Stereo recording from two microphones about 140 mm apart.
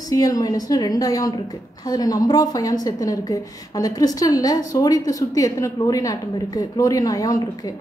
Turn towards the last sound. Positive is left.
turn(degrees=25)  # may be behind; listen again after turning